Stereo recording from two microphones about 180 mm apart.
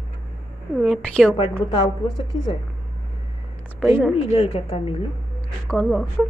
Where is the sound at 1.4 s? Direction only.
25° left (ahead or behind).